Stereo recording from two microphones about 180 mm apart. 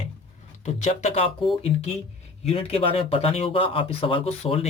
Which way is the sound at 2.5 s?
30° left (ahead or behind).